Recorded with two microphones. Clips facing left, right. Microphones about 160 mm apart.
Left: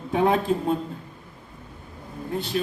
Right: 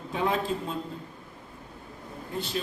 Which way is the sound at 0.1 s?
55° left (ahead or behind).